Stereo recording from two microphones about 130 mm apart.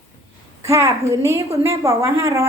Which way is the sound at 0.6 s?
25° right (ahead or behind).